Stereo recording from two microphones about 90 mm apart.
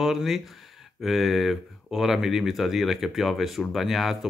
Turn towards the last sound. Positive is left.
turn(degrees=0)  # may be behind; listen again after turning